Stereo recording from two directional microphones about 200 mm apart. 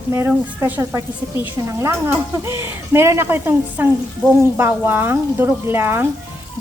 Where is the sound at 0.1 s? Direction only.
10° right (ahead or behind).